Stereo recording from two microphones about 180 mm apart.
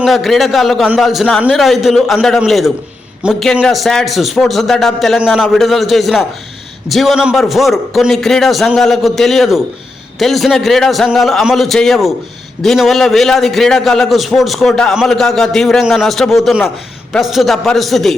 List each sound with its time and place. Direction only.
0.0 s a man's voice: centre (ahead or behind)